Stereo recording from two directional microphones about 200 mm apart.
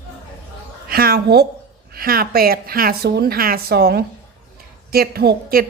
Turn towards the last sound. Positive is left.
turn(degrees=-50)  # may be behind; listen again after turning